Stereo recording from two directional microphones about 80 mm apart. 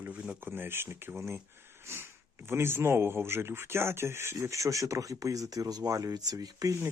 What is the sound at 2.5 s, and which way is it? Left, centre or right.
Speech, right.